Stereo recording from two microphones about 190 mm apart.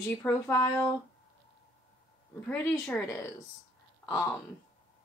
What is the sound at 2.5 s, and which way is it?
Speech, 10° left (ahead or behind).